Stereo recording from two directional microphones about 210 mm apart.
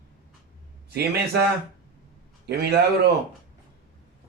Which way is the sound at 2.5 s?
50° right (ahead or behind).